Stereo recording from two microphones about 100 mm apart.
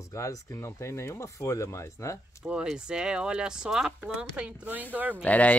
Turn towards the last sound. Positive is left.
turn(degrees=15)  # may be behind; listen again after turning